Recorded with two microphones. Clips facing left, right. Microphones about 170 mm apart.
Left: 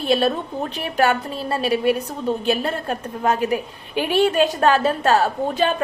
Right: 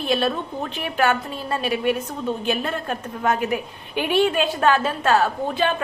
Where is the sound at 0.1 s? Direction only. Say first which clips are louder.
Left 3 dB; 40° left (ahead or behind).